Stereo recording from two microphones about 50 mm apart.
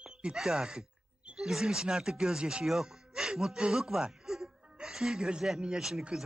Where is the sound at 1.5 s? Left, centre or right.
Centre.